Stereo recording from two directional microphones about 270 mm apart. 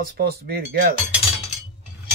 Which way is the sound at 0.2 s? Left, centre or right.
Right.